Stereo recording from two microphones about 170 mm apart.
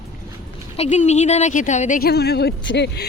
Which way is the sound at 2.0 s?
75° left (ahead or behind).